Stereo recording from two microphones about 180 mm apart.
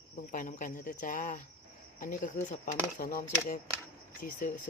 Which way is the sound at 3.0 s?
55° left (ahead or behind).